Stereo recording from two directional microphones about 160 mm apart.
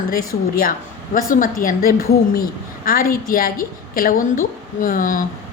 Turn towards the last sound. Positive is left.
turn(degrees=55)  # may be behind; listen again after turning